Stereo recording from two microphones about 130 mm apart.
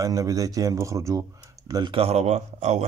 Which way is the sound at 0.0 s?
30° right (ahead or behind).